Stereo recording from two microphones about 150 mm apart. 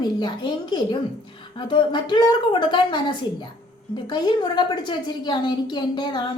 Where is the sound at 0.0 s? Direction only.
30° left (ahead or behind).